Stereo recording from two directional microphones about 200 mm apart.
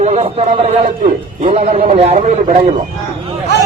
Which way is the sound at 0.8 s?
40° right (ahead or behind).